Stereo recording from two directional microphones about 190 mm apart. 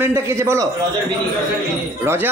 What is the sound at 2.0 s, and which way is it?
Speech, 10° right (ahead or behind).